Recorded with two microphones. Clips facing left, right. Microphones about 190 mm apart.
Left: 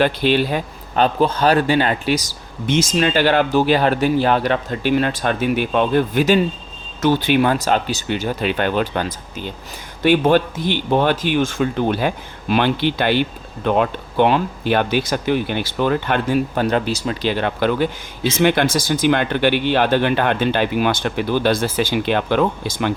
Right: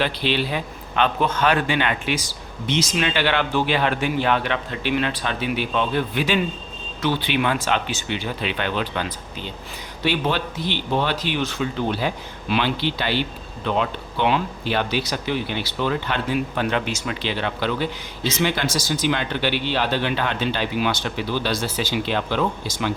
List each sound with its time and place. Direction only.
0.0 s a man's voice: 45° left (ahead or behind)
17.3 s speech: 50° left (ahead or behind)